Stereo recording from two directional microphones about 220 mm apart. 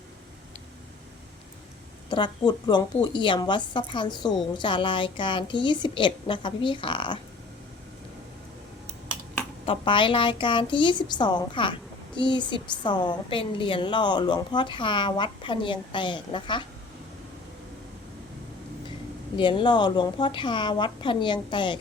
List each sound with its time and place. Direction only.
2.0 s a woman's voice: 20° left (ahead or behind)
9.6 s a woman's voice: 20° left (ahead or behind)
19.4 s a woman's voice: 20° left (ahead or behind)